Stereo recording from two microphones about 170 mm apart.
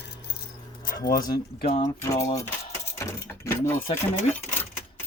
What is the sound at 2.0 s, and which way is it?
Speech, 15° left (ahead or behind).